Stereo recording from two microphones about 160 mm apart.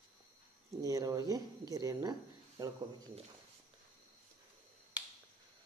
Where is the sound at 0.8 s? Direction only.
20° right (ahead or behind).